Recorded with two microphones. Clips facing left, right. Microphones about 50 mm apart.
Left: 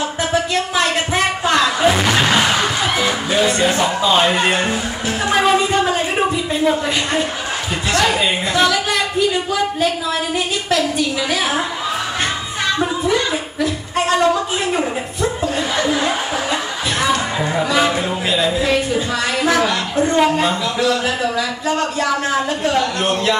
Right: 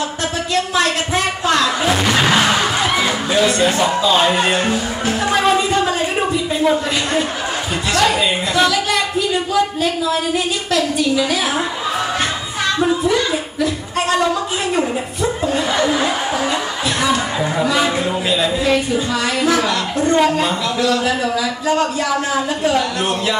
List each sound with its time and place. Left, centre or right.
0.6 s a sound: centre
4.0 s speech: centre
4.3 s speech: centre
5.3 s a sound: centre
10.3 s speech: centre
12.7 s speech: centre